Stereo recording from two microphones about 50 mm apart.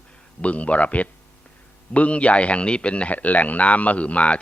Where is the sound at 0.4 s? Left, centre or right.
Left.